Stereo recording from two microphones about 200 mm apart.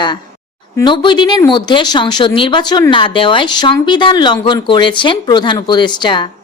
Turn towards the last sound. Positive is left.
turn(degrees=20)  # may be behind; listen again after turning